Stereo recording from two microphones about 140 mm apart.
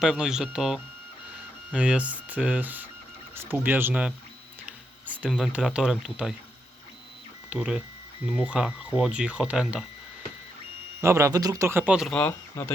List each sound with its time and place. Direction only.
0.0 s speech: 5° right (ahead or behind)
5.2 s speech: 5° right (ahead or behind)
7.5 s speech: 10° right (ahead or behind)
11.0 s speech: 20° right (ahead or behind)
12.1 s speech: 10° left (ahead or behind)